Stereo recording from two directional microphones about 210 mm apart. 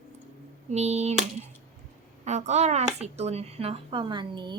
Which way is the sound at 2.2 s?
35° right (ahead or behind).